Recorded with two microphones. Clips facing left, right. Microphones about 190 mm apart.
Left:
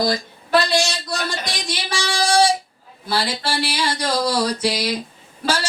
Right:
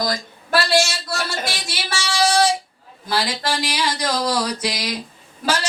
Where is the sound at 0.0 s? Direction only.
30° left (ahead or behind).